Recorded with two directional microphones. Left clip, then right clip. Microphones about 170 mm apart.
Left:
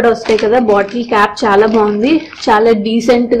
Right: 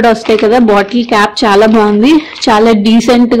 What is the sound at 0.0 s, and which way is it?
A woman's voice, 50° right (ahead or behind).